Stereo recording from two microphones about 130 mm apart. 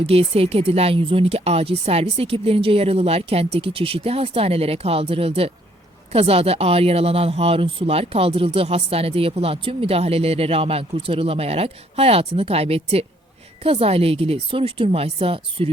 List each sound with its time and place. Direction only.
0.0 s speech: 50° right (ahead or behind)